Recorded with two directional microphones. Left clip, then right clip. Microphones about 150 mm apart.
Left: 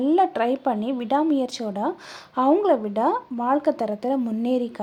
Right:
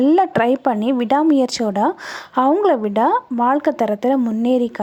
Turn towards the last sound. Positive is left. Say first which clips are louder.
# right 7 dB
turn(degrees=-30)  # may be behind; listen again after turning